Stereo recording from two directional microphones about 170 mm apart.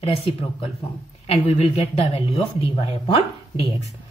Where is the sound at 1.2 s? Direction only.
40° left (ahead or behind).